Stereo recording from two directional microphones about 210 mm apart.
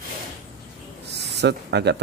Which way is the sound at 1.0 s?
55° right (ahead or behind).